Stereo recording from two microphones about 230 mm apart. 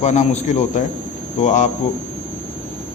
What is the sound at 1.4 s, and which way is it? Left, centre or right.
Speech, left.